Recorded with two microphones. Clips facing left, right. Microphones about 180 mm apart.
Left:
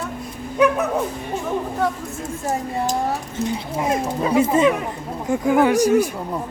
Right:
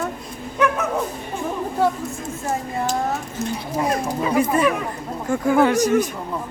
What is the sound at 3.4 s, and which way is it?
Speech, 20° left (ahead or behind).